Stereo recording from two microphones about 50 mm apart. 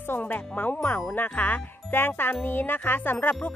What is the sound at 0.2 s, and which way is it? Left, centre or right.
Speech, left.